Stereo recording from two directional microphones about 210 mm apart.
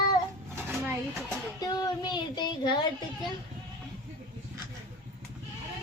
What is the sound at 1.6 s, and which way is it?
Child singing, 20° left (ahead or behind).